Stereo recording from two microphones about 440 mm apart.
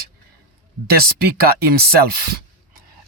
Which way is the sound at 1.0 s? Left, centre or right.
Right.